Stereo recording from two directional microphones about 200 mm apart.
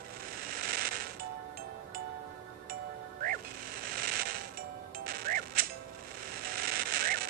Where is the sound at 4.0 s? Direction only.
45° right (ahead or behind).